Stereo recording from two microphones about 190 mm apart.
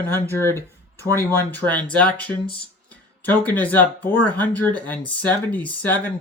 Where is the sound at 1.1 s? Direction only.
10° left (ahead or behind).